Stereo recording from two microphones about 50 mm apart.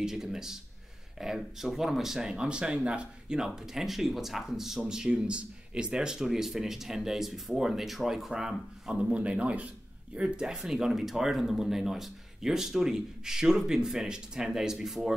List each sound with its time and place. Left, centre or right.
0.0 s speech: centre
9.1 s speech: right